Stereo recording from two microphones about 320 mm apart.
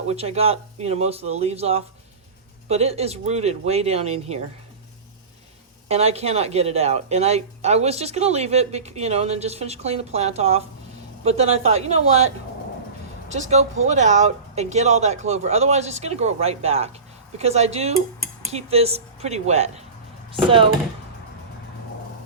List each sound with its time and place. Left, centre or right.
0.1 s speech: centre
5.9 s speech: centre